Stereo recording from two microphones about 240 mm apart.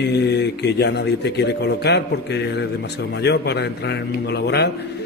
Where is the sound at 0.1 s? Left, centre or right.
Left.